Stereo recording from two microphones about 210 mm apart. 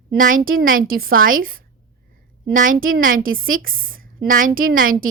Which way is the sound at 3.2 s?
70° right (ahead or behind).